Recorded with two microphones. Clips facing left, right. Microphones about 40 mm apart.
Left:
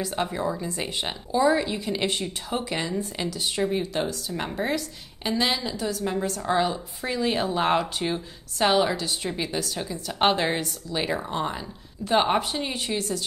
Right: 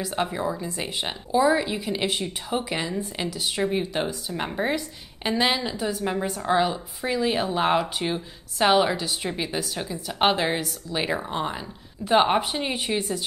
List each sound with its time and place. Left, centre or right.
0.0 s a woman's voice: centre
6.6 s a woman's voice: centre